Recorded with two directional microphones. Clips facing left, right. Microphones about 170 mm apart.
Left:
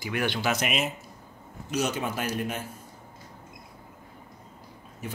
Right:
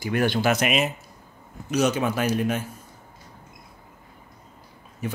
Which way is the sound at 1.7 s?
85° right.